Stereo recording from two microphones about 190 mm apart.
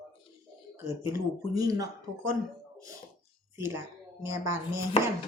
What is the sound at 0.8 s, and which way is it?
Speech, 15° right (ahead or behind).